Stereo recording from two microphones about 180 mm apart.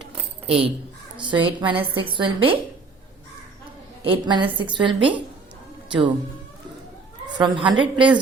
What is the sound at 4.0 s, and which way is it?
A woman's voice, 25° right (ahead or behind).